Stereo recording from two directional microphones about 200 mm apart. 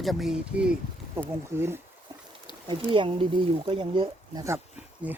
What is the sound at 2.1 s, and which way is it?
Boat, 15° right (ahead or behind).